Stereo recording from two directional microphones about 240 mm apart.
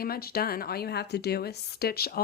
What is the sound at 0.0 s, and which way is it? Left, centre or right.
A woman's voice, left.